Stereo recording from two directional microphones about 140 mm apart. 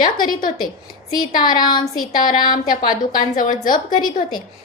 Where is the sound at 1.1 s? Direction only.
30° left (ahead or behind).